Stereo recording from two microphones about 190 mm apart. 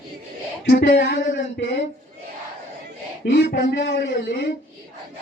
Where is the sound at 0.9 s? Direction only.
70° left (ahead or behind).